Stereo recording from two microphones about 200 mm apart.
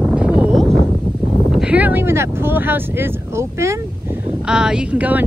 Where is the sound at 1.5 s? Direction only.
5° right (ahead or behind).